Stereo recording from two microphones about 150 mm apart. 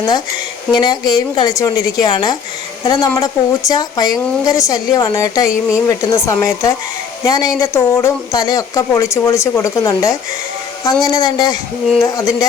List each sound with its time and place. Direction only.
0.7 s speech: 30° left (ahead or behind)
5.5 s speech: 5° right (ahead or behind)
5.9 s speech: 20° left (ahead or behind)